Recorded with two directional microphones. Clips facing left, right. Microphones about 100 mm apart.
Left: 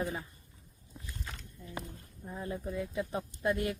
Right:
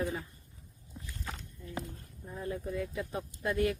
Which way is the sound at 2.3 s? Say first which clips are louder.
Right 1 dB; 20° left (ahead or behind).